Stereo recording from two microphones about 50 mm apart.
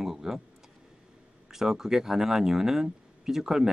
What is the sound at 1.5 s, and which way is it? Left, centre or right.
Speech, centre.